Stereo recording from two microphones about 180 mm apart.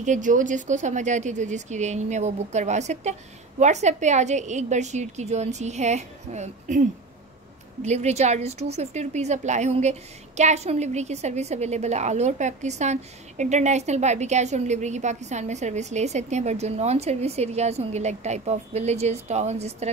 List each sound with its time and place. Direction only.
0.0 s a woman's voice: 45° right (ahead or behind)
7.8 s a woman's voice: 40° right (ahead or behind)